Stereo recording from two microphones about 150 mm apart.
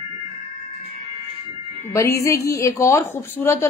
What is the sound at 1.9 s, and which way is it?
A woman's voice, 20° left (ahead or behind).